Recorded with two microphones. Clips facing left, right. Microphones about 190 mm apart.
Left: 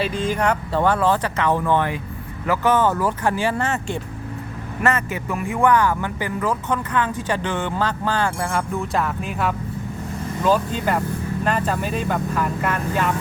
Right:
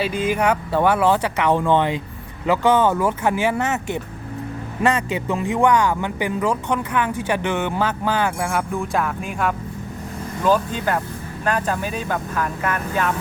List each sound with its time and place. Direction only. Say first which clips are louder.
0.1 s speech: right 2 dB; 10° right (ahead or behind)
4.8 s speech: right 2 dB; 15° right (ahead or behind)
8.4 s speech: right 1 dB; centre (ahead or behind)